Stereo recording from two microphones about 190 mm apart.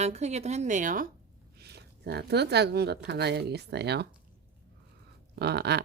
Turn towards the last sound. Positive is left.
turn(degrees=-60)  # may be behind; listen again after turning